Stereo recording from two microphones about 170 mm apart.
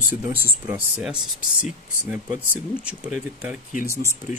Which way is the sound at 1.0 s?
5° right (ahead or behind).